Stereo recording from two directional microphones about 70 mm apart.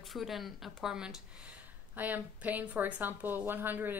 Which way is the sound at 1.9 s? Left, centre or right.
Right.